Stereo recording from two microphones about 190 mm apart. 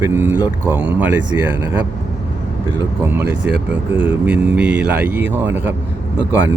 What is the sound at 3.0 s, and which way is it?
Speech, 10° right (ahead or behind).